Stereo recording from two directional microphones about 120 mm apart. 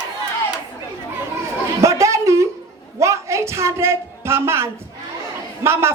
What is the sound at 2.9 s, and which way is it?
A woman's voice, 25° right (ahead or behind).